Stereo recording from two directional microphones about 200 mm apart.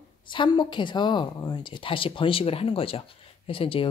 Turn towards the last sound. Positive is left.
turn(degrees=25)  # may be behind; listen again after turning